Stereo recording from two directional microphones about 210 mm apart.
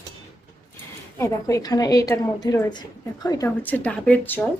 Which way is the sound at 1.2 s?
15° left (ahead or behind).